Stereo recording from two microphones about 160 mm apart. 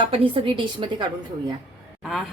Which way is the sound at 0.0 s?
35° right (ahead or behind).